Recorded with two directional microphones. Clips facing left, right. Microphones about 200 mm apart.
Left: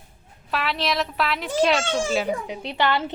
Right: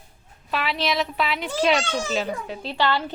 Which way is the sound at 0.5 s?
Centre (ahead or behind).